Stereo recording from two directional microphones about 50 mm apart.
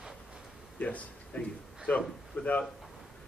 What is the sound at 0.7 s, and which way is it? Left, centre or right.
Speech, left.